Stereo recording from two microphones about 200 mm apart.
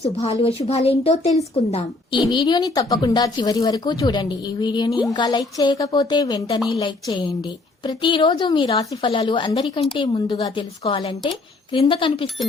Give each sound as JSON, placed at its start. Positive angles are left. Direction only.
{"t": 0.0, "sound": "speech", "side_deg": 30}
{"t": 4.9, "sound": "speech", "side_deg": 0}
{"t": 5.1, "sound": "speech", "side_deg": 20}